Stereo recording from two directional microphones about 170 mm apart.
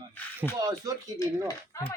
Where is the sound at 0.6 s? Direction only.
20° right (ahead or behind).